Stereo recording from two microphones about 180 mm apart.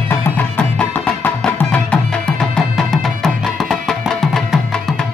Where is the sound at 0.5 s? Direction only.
10° left (ahead or behind).